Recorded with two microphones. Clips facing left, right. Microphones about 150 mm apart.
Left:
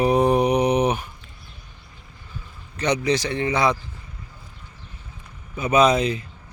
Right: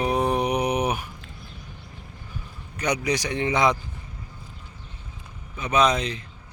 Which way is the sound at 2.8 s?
10° right (ahead or behind).